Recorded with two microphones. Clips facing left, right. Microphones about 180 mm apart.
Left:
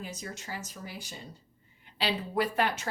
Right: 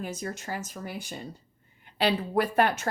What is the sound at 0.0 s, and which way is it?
Speech, 55° right (ahead or behind).